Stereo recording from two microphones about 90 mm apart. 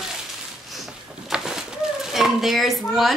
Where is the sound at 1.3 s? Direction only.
5° right (ahead or behind).